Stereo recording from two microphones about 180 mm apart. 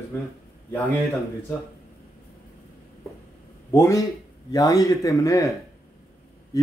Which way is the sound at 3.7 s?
15° left (ahead or behind).